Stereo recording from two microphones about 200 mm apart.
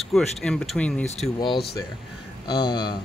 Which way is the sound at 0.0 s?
Centre (ahead or behind).